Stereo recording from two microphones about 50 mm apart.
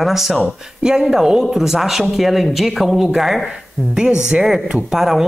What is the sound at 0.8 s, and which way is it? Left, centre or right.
Speech, centre.